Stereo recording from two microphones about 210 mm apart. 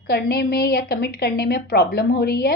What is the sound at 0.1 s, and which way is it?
Speech, 50° left (ahead or behind).